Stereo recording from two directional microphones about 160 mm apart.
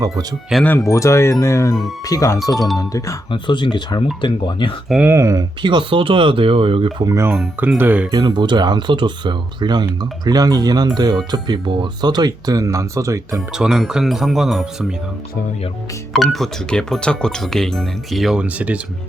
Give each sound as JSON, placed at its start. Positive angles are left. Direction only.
{"t": 0.5, "sound": "speech", "side_deg": 10}
{"t": 4.9, "sound": "speech", "side_deg": -10}
{"t": 7.0, "sound": "speech", "side_deg": -20}
{"t": 8.1, "sound": "speech", "side_deg": -25}
{"t": 13.5, "sound": "speech", "side_deg": -5}
{"t": 16.1, "sound": "speech", "side_deg": 0}